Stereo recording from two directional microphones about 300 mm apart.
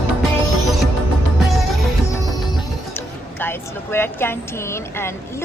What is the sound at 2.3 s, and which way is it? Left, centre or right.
Music, centre.